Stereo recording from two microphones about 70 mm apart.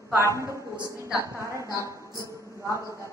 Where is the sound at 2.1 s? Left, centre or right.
Right.